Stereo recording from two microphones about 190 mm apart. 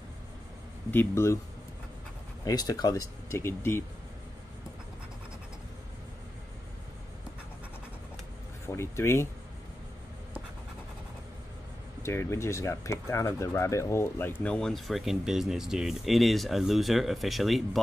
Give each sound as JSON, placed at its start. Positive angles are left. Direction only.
{"t": 0.9, "sound": "speech", "side_deg": 15}
{"t": 2.4, "sound": "speech", "side_deg": 20}
{"t": 8.6, "sound": "speech", "side_deg": 15}
{"t": 12.0, "sound": "speech", "side_deg": 15}